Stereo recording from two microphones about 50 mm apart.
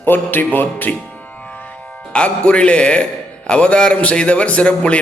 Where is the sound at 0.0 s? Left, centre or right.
Left.